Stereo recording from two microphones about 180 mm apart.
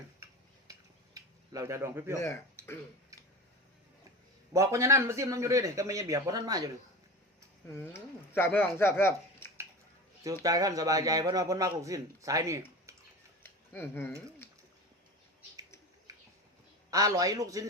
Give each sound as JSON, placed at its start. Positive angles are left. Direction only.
{"t": 0.7, "sound": "a sound", "side_deg": -20}
{"t": 2.1, "sound": "speech", "side_deg": 15}
{"t": 4.5, "sound": "speech", "side_deg": -15}
{"t": 7.7, "sound": "speech", "side_deg": 15}
{"t": 10.4, "sound": "speech", "side_deg": -20}
{"t": 13.4, "sound": "a sound", "side_deg": 10}
{"t": 16.9, "sound": "speech", "side_deg": -20}